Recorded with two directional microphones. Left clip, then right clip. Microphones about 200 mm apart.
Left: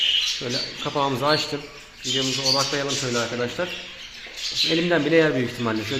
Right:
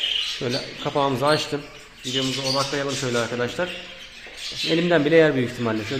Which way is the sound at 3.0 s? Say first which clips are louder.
Right 1 dB; 15° right (ahead or behind).